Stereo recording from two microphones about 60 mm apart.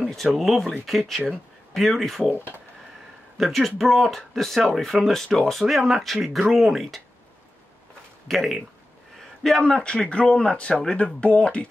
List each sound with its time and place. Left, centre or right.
0.1 s speech: centre
3.3 s speech: centre
8.3 s speech: centre
9.6 s speech: centre